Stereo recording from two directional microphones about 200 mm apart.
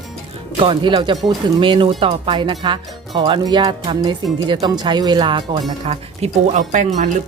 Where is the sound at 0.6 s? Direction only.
25° right (ahead or behind).